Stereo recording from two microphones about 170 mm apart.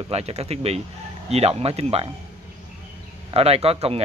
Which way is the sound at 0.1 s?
40° right (ahead or behind).